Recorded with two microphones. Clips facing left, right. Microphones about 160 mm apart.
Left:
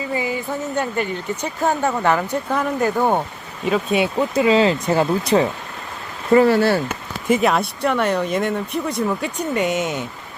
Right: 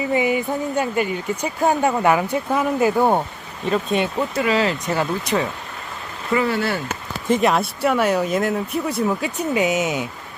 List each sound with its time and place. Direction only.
0.1 s speech: 20° right (ahead or behind)
3.7 s speech: 10° left (ahead or behind); by 6.8 s 35° left (ahead or behind)
7.3 s speech: centre (ahead or behind)